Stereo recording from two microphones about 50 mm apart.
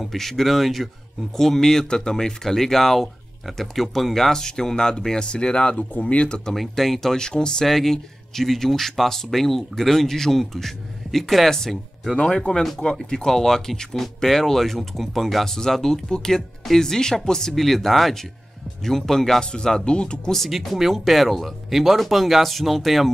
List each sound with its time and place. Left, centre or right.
0.0 s speech: centre
6.5 s speech: centre
20.4 s speech: centre